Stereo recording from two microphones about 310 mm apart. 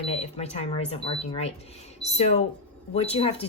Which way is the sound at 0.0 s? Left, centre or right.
Centre.